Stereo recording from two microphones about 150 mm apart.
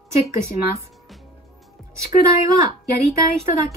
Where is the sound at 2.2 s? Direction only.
20° right (ahead or behind).